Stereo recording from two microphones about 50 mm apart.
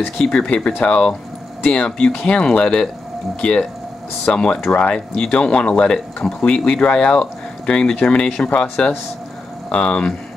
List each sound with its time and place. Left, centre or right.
0.2 s speech: centre